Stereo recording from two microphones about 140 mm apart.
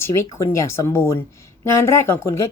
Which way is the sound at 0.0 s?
20° left (ahead or behind).